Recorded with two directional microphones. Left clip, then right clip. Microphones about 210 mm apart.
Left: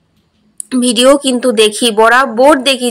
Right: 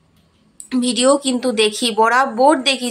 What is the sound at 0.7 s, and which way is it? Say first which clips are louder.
Speech: left 7 dB; 20° left (ahead or behind).